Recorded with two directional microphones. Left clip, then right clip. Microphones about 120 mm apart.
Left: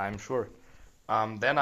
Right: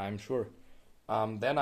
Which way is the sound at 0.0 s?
30° right (ahead or behind).